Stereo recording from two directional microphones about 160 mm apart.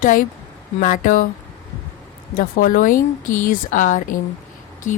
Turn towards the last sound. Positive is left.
turn(degrees=50)  # may be behind; listen again after turning